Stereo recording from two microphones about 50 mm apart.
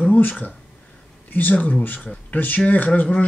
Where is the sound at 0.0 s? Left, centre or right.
Left.